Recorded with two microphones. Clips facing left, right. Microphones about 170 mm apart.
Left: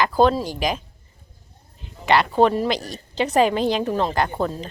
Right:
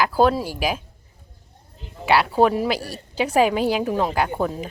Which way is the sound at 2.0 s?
5° right (ahead or behind).